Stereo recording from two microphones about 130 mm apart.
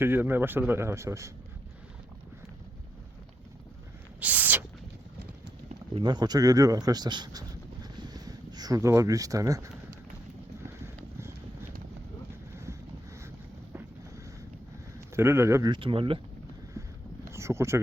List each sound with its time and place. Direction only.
0.0 s a man's voice: 15° right (ahead or behind)
4.2 s a sound: 10° right (ahead or behind)
5.9 s speech: 35° right (ahead or behind)
10.7 s clip-clop: 20° right (ahead or behind)
14.9 s speech: 20° right (ahead or behind)
15.7 s speech: 45° right (ahead or behind)
16.8 s boat: 25° right (ahead or behind)
17.3 s speech: 20° right (ahead or behind)